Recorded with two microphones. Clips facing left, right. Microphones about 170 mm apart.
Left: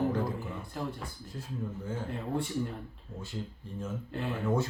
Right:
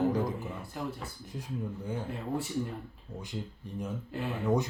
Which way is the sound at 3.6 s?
15° right (ahead or behind).